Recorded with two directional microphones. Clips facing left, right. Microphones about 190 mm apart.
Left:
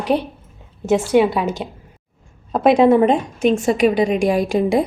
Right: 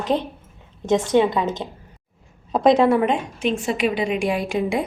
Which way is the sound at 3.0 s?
40° left (ahead or behind).